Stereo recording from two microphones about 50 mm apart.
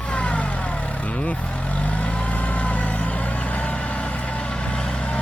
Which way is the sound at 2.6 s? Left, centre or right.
Left.